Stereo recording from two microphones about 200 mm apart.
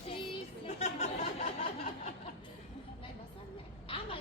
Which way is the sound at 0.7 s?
35° left (ahead or behind).